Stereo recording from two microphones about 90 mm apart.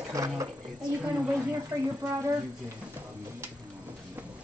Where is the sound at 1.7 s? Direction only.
35° right (ahead or behind).